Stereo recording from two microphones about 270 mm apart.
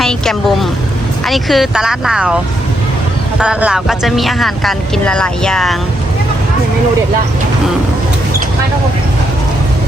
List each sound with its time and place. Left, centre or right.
0.0 s vehicle: centre
1.3 s speech: centre
3.4 s speech: centre